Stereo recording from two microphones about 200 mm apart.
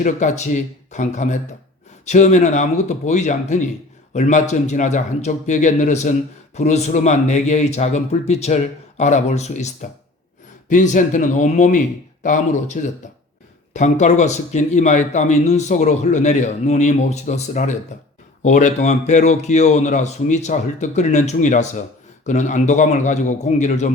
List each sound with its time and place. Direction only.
0.0 s speech: 35° left (ahead or behind)